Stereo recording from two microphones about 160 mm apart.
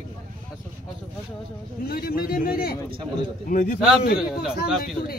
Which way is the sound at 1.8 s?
70° left (ahead or behind).